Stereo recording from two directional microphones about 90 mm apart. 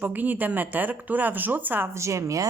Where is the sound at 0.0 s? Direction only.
20° right (ahead or behind).